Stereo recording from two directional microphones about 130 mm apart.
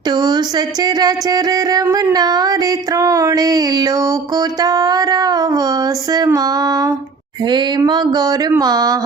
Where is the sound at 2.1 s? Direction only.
30° right (ahead or behind).